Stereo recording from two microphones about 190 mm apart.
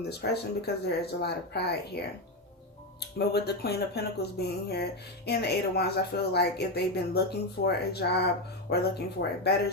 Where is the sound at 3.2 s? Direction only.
60° left (ahead or behind).